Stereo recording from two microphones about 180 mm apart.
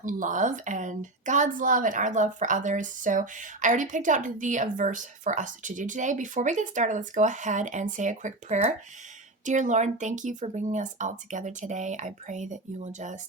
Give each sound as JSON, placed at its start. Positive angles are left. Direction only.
{"t": 0.0, "sound": "speech", "side_deg": -45}